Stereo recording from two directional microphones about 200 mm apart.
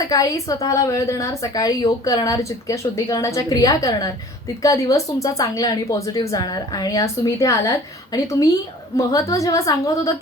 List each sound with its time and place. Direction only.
0.1 s a woman's voice: 15° left (ahead or behind)